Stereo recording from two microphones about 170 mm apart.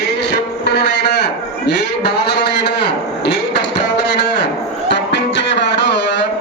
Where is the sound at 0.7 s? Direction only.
75° left (ahead or behind).